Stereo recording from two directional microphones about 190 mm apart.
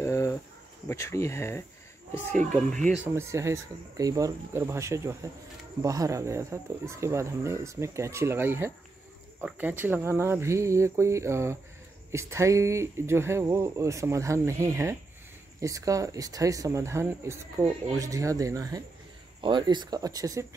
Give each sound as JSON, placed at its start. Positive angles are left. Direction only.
{"t": 0.0, "sound": "cricket", "side_deg": 15}
{"t": 0.8, "sound": "speech", "side_deg": 15}
{"t": 3.0, "sound": "speech", "side_deg": -15}